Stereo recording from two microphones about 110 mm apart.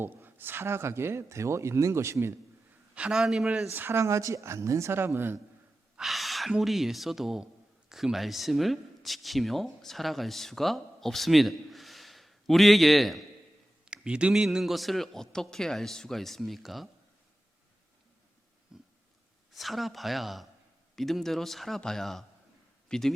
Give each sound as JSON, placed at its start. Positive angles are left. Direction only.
{"t": 0.0, "sound": "speech", "side_deg": -20}
{"t": 2.9, "sound": "a man's voice", "side_deg": -10}
{"t": 3.8, "sound": "speech", "side_deg": -20}
{"t": 6.0, "sound": "a man's voice", "side_deg": 0}
{"t": 18.7, "sound": "a sound", "side_deg": -5}
{"t": 19.5, "sound": "a man's voice", "side_deg": 0}